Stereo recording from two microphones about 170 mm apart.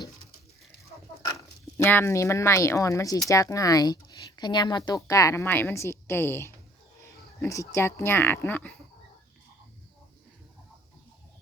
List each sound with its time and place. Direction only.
1.8 s speech: 15° left (ahead or behind)